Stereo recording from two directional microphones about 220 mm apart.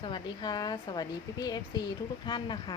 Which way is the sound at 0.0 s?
20° left (ahead or behind).